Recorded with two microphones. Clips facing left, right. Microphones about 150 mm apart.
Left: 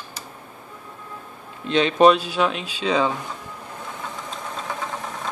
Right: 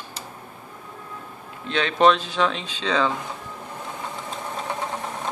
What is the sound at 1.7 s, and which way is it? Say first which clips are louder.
Speech: left 3 dB; 15° left (ahead or behind).